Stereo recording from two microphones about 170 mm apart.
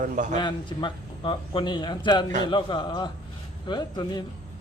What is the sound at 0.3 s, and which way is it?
A man's voice, 25° left (ahead or behind).